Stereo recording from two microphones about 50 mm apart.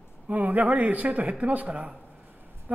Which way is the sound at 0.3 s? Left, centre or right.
Right.